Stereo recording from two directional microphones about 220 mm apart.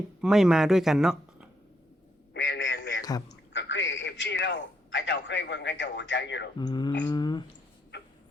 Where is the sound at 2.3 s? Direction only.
50° left (ahead or behind).